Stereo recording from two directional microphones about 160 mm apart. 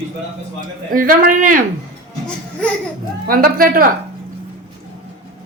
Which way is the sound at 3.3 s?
65° right (ahead or behind).